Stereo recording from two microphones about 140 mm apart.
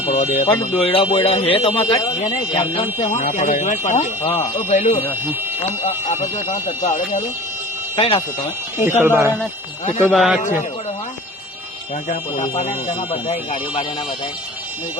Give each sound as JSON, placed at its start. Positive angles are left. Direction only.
{"t": 0.0, "sound": "a sound", "side_deg": 70}
{"t": 0.7, "sound": "speech", "side_deg": 45}
{"t": 3.2, "sound": "speech", "side_deg": 70}
{"t": 4.2, "sound": "speech", "side_deg": 40}
{"t": 6.1, "sound": "speech", "side_deg": 60}
{"t": 9.0, "sound": "speech", "side_deg": -15}
{"t": 10.0, "sound": "a man's voice", "side_deg": 5}
{"t": 12.0, "sound": "speech", "side_deg": 60}